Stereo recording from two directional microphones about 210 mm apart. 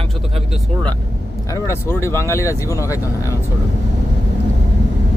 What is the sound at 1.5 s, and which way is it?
Speech, 10° left (ahead or behind).